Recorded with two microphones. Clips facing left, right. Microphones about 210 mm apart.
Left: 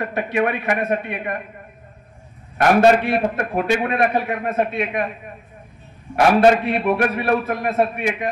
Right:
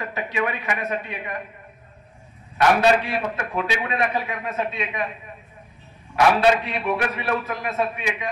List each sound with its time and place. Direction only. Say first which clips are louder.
0.0 s speech: left 6 dB; 55° left (ahead or behind)
2.5 s a man's voice: left 4 dB; 50° left (ahead or behind)
6.1 s a man's voice: left 4 dB; 50° left (ahead or behind)